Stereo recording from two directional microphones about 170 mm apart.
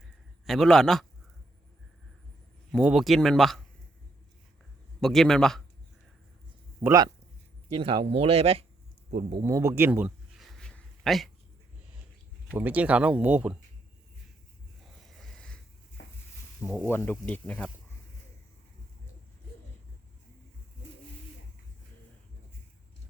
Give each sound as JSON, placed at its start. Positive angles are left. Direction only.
{"t": 0.4, "sound": "speech", "side_deg": 0}
{"t": 2.7, "sound": "speech", "side_deg": 0}
{"t": 4.9, "sound": "speech", "side_deg": 0}
{"t": 6.7, "sound": "speech", "side_deg": -20}
{"t": 7.7, "sound": "speech", "side_deg": -30}
{"t": 9.3, "sound": "speech", "side_deg": -20}
{"t": 10.3, "sound": "a sound", "side_deg": 0}
{"t": 12.5, "sound": "speech", "side_deg": -10}
{"t": 15.1, "sound": "a sound", "side_deg": 0}
{"t": 16.6, "sound": "speech", "side_deg": -5}
{"t": 16.8, "sound": "speech", "side_deg": 10}